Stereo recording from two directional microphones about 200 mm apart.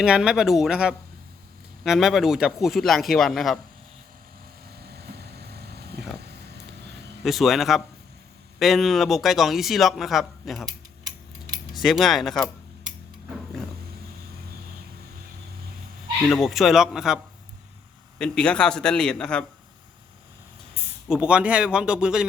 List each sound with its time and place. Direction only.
0.0 s speech: 5° right (ahead or behind)
4.9 s vehicle: 55° right (ahead or behind)
7.3 s speech: centre (ahead or behind)
11.7 s speech: centre (ahead or behind)
16.3 s speech: centre (ahead or behind)
18.2 s speech: 5° left (ahead or behind)
20.8 s a sound: 30° right (ahead or behind)
21.1 s speech: 5° right (ahead or behind)